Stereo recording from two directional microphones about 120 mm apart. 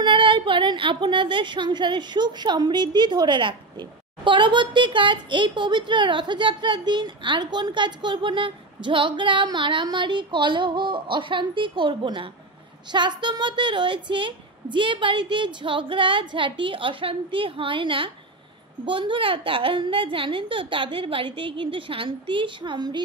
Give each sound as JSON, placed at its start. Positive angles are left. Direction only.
{"t": 0.0, "sound": "a woman's voice", "side_deg": -45}